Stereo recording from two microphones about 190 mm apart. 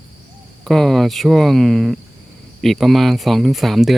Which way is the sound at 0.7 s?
Centre (ahead or behind).